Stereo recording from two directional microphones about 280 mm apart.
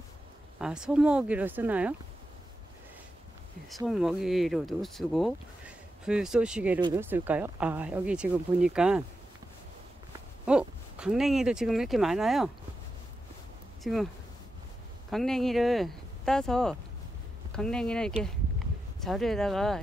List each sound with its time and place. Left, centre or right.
0.6 s speech: centre
3.7 s speech: centre
10.4 s speech: centre
13.9 s speech: centre
15.0 s speech: centre